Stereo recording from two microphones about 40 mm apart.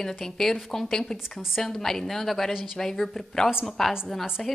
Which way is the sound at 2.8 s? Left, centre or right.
Centre.